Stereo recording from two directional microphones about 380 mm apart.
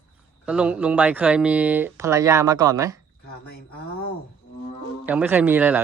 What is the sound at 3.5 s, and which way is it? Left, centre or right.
Speech, left.